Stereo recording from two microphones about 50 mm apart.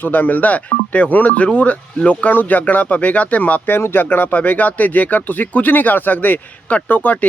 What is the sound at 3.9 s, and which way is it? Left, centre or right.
Speech, left.